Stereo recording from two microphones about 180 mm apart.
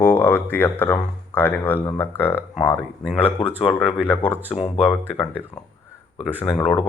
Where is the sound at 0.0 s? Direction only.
10° left (ahead or behind).